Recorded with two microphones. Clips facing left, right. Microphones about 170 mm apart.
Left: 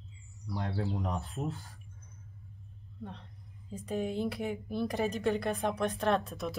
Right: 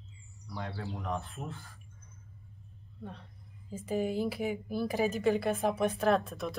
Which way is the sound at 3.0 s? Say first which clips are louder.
Left 1 dB; centre (ahead or behind).